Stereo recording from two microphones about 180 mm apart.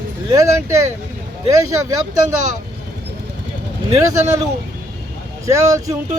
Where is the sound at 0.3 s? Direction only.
20° right (ahead or behind).